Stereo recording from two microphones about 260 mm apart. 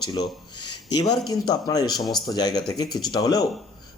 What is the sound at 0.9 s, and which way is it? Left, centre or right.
Speech, centre.